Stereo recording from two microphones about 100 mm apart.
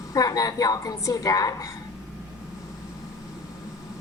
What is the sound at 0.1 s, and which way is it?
A woman's voice, 35° left (ahead or behind).